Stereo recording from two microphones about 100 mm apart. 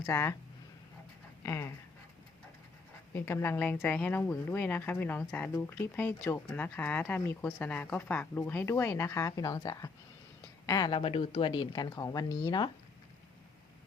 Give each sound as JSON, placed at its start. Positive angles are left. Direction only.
{"t": 0.1, "sound": "a woman's voice", "side_deg": 25}
{"t": 3.2, "sound": "a woman's voice", "side_deg": 25}
{"t": 11.0, "sound": "speech", "side_deg": 70}